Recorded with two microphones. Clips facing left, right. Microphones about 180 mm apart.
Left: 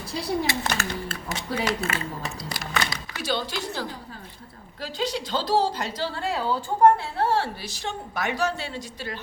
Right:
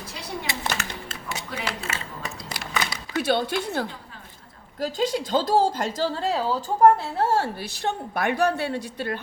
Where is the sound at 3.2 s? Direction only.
55° right (ahead or behind).